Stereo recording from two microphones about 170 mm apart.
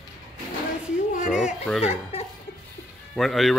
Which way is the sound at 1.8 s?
40° left (ahead or behind).